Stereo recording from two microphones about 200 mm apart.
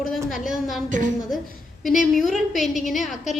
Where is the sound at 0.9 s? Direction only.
40° right (ahead or behind).